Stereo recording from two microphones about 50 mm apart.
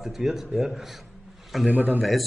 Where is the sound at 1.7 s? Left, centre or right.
Right.